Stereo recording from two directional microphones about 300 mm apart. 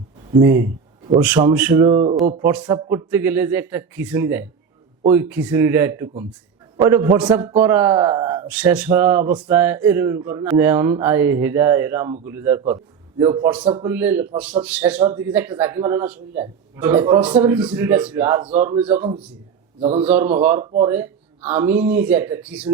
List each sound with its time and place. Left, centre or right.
0.4 s a man's voice: centre
2.4 s a man's voice: centre
13.9 s a man's voice: centre
19.8 s a man's voice: centre
20.1 s a man's voice: centre